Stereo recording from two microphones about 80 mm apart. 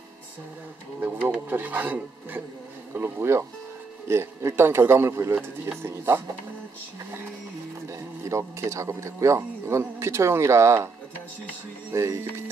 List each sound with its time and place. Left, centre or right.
1.5 s a man's voice: right
8.3 s a man's voice: right
11.9 s a man's voice: right